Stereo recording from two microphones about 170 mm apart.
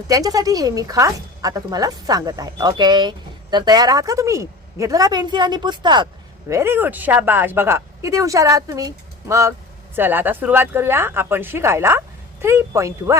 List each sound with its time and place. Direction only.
0.1 s a woman's voice: 20° right (ahead or behind)
6.5 s speech: 15° right (ahead or behind)